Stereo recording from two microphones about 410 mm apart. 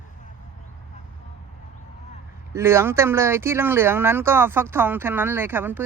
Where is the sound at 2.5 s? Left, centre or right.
Centre.